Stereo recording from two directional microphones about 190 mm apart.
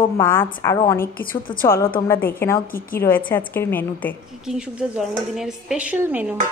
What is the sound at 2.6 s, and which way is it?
Speech, 50° left (ahead or behind).